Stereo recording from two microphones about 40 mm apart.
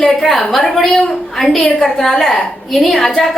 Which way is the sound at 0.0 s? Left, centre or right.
Centre.